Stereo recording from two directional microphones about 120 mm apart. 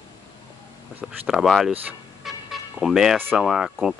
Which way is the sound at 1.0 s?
Centre (ahead or behind).